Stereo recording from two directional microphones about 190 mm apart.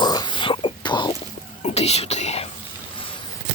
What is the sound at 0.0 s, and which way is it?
Whispering, 20° left (ahead or behind).